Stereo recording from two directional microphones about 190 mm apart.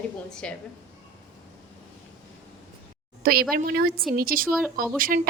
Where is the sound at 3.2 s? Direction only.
50° right (ahead or behind).